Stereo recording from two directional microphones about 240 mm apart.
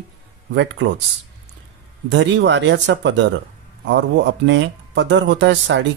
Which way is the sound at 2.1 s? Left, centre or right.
Right.